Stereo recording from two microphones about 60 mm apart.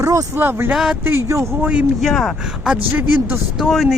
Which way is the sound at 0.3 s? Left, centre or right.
Right.